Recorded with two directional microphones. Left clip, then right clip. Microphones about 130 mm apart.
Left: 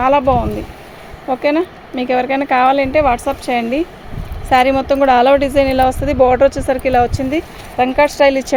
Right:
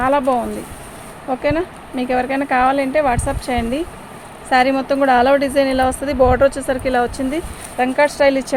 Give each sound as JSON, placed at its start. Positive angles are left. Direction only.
{"t": 0.0, "sound": "a woman's voice", "side_deg": 65}